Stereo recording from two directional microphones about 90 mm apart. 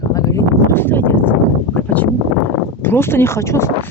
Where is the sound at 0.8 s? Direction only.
20° left (ahead or behind).